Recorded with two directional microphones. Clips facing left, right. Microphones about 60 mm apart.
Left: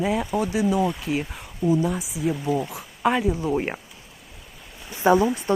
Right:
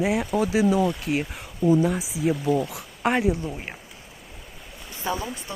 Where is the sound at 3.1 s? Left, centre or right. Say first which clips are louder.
Even; centre.